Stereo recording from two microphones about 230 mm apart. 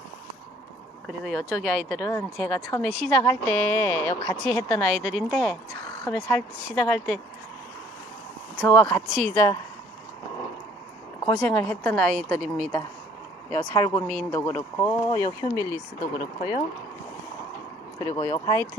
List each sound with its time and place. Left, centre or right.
1.0 s speech: centre
8.6 s speech: centre
11.3 s speech: centre
12.1 s a woman's voice: right
12.5 s speech: centre; by 16.6 s left
18.0 s speech: centre